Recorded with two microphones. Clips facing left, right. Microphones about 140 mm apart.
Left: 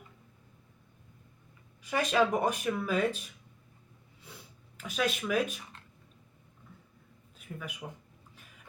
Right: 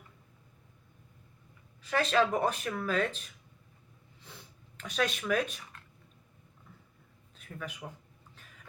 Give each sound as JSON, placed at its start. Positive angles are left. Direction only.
{"t": 1.8, "sound": "speech", "side_deg": 10}
{"t": 4.8, "sound": "speech", "side_deg": 10}
{"t": 7.3, "sound": "mouse", "side_deg": 10}